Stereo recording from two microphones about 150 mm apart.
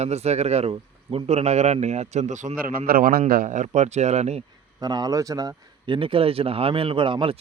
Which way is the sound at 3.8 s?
50° right (ahead or behind).